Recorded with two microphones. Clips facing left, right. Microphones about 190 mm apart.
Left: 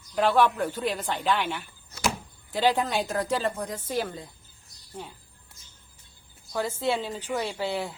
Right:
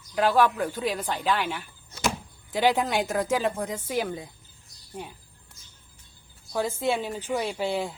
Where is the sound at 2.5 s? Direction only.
15° right (ahead or behind).